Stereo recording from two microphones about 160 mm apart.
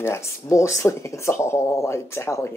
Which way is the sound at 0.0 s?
15° left (ahead or behind).